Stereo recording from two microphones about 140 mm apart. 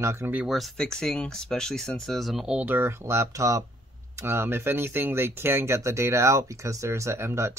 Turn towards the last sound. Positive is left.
turn(degrees=-20)  # may be behind; listen again after turning